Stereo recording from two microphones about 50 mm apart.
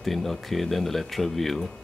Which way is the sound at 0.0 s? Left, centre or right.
Centre.